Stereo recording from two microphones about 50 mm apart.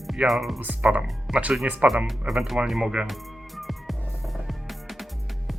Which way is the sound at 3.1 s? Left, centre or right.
Centre.